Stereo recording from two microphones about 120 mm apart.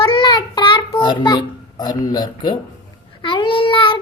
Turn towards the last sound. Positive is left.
turn(degrees=45)  # may be behind; listen again after turning